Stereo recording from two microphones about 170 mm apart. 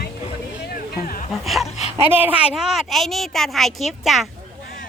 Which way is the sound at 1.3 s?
Centre (ahead or behind).